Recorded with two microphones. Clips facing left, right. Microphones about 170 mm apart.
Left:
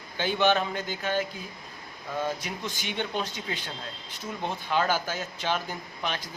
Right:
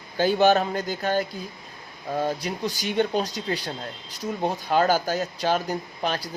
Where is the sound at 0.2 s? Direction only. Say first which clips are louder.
Right 5 dB; 40° right (ahead or behind).